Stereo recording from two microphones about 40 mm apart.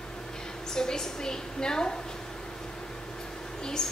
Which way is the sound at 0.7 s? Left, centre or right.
Centre.